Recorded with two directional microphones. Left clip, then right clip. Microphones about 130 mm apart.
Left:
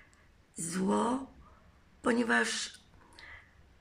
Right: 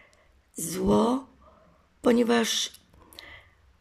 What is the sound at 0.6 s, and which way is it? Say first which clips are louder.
Speech: right 7 dB; 25° right (ahead or behind).